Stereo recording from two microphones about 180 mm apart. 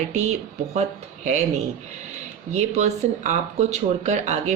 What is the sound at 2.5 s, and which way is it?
Speech, 40° right (ahead or behind).